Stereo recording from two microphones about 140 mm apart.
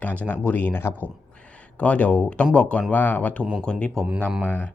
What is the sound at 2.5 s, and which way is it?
Speech, 10° left (ahead or behind).